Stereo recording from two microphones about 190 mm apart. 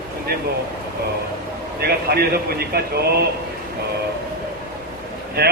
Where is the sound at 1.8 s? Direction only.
55° right (ahead or behind).